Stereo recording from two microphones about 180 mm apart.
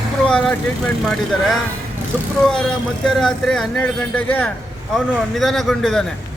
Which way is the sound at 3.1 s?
Centre (ahead or behind).